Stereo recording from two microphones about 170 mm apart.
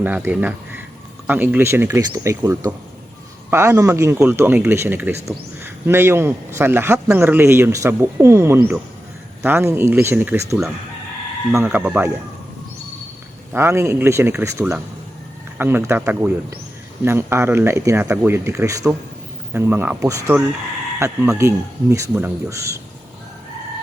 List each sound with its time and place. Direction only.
0.0 s a man's voice: 10° right (ahead or behind)
13.5 s a man's voice: 15° right (ahead or behind)